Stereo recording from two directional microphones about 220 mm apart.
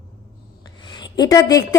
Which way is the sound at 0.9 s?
20° left (ahead or behind).